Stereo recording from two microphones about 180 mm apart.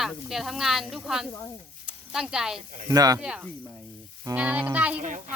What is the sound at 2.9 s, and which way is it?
Speech, 20° right (ahead or behind).